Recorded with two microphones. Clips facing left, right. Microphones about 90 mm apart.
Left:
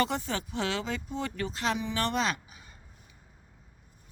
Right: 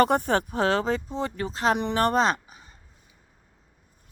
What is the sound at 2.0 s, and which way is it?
Speech, 40° right (ahead or behind).